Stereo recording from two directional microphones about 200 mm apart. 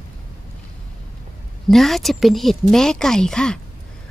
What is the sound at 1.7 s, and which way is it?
Speech, centre (ahead or behind).